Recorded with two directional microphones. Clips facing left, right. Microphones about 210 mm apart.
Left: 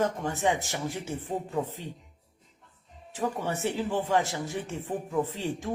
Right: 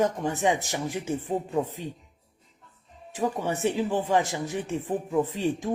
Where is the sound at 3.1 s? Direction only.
15° right (ahead or behind).